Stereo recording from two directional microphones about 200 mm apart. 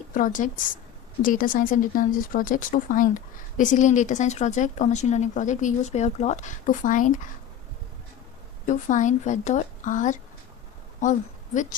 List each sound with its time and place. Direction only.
0.1 s speech: 40° left (ahead or behind)
8.6 s a woman's voice: 40° left (ahead or behind)